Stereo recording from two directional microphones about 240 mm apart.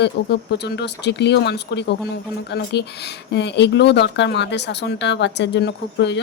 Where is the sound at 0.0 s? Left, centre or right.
Left.